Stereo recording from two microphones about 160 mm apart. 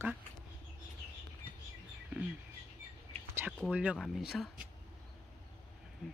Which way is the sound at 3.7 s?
10° right (ahead or behind).